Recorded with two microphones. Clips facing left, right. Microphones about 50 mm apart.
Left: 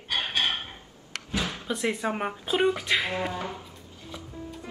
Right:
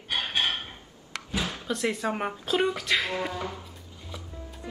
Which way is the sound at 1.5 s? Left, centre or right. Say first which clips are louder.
Even; centre.